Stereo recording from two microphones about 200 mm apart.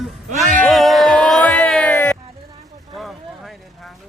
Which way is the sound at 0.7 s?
Centre (ahead or behind).